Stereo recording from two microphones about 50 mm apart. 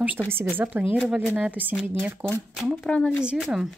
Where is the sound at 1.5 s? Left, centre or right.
Right.